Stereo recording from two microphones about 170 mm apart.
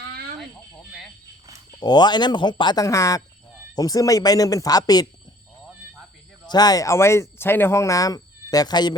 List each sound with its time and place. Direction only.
1.8 s speech: 25° left (ahead or behind)
6.5 s speech: 25° left (ahead or behind)